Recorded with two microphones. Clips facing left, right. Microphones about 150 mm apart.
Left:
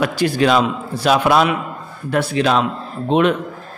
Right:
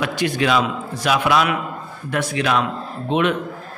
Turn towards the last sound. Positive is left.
turn(degrees=35)  # may be behind; listen again after turning